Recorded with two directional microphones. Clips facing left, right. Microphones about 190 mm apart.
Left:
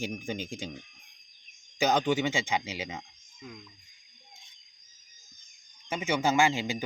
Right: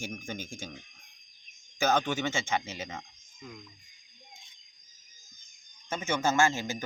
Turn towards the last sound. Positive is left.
turn(degrees=15)  # may be behind; listen again after turning